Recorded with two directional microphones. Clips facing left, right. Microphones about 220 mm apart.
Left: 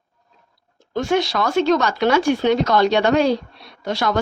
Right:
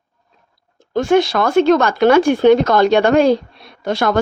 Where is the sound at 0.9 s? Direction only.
50° right (ahead or behind).